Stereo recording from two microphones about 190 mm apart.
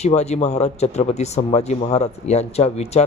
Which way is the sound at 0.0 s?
35° left (ahead or behind).